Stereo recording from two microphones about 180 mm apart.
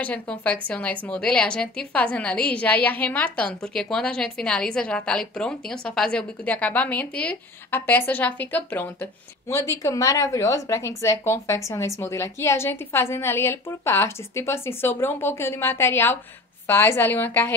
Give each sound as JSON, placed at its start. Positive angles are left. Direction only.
{"t": 0.0, "sound": "a woman's voice", "side_deg": 10}